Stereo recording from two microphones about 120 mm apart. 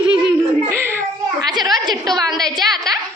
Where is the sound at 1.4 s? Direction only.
35° right (ahead or behind).